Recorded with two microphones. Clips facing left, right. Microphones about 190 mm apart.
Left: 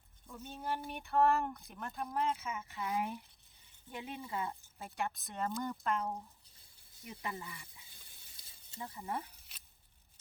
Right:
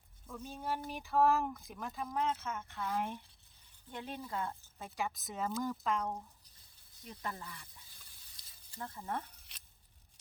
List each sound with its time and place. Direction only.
0.3 s speech: centre (ahead or behind)
8.4 s snake: 25° left (ahead or behind)
8.8 s speech: 10° left (ahead or behind)